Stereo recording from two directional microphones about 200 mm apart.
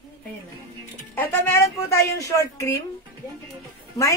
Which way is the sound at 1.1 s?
15° left (ahead or behind).